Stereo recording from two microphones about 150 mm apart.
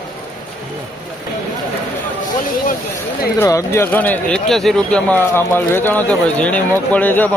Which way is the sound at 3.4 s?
20° left (ahead or behind).